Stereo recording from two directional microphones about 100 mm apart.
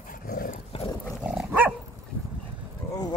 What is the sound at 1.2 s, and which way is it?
Dog, 5° right (ahead or behind).